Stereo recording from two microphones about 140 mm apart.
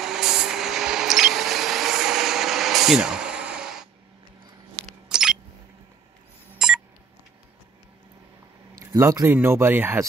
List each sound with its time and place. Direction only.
0.0 s vehicle: 5° right (ahead or behind)
5.1 s a sound: 5° right (ahead or behind)
8.7 s speech: 20° right (ahead or behind)